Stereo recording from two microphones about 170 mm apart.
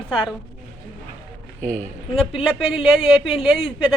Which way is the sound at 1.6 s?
50° right (ahead or behind).